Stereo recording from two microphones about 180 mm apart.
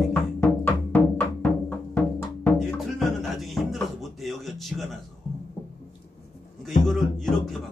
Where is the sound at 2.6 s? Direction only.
Centre (ahead or behind).